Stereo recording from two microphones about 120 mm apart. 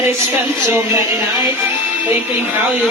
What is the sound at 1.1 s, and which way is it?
Speech, 40° left (ahead or behind).